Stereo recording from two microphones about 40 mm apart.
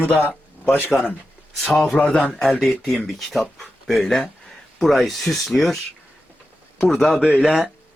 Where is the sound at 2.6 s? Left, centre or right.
Centre.